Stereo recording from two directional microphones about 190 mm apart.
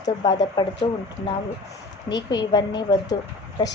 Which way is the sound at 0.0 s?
20° left (ahead or behind).